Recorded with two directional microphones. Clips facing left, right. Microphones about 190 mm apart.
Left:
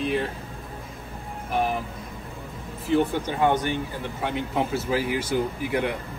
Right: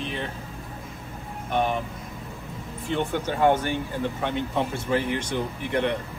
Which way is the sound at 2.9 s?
15° left (ahead or behind).